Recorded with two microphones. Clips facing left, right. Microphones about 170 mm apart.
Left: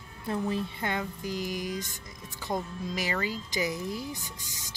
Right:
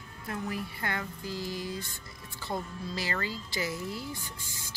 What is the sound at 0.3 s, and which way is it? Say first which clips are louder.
Speech: left 5 dB; 25° left (ahead or behind).